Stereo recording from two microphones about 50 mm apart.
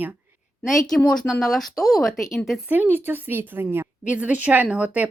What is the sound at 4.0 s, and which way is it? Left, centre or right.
Speech, right.